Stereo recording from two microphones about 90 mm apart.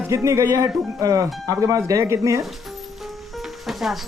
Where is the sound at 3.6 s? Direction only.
Centre (ahead or behind).